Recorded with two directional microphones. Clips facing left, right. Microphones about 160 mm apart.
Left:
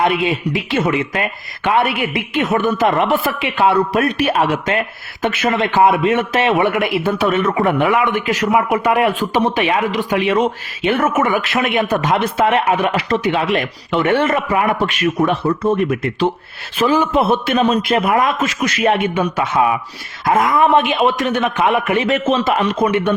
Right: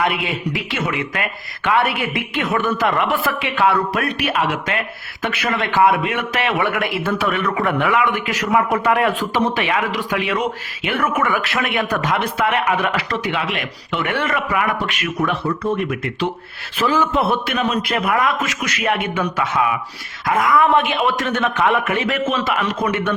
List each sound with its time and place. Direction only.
0.0 s speech: 25° left (ahead or behind)
4.3 s a man's voice: 35° left (ahead or behind)
13.3 s a man's voice: 35° left (ahead or behind)
16.8 s speech: 20° left (ahead or behind)
17.5 s speech: 30° left (ahead or behind)